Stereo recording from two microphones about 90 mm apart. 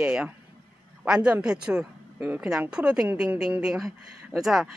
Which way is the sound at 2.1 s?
20° right (ahead or behind).